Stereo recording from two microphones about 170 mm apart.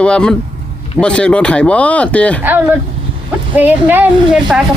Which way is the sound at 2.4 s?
10° right (ahead or behind).